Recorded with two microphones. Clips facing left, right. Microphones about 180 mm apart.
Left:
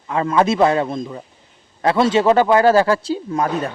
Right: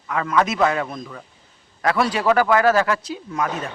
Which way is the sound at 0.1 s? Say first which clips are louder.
Left 4 dB; 30° left (ahead or behind).